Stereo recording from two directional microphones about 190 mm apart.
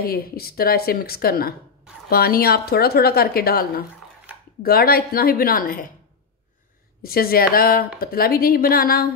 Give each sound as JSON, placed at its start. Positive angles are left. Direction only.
{"t": 0.0, "sound": "speech", "side_deg": 55}
{"t": 7.0, "sound": "speech", "side_deg": 50}